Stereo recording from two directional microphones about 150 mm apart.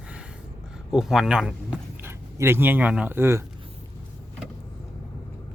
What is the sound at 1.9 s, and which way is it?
Speech, 15° right (ahead or behind).